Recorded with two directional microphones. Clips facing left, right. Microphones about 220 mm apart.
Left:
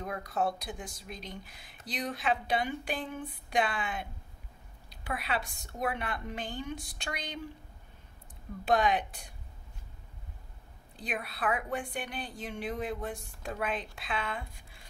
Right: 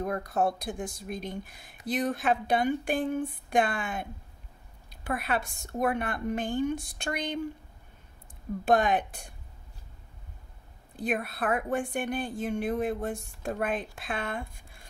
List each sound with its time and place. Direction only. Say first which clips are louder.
0.0 s a woman's voice: right 5 dB; 50° right (ahead or behind)
8.6 s a woman's voice: right 3 dB; 50° right (ahead or behind)
11.0 s a woman's voice: right 6 dB; 50° right (ahead or behind)